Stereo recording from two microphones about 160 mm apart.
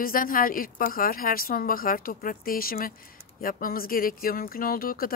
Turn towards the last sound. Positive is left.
turn(degrees=65)  # may be behind; listen again after turning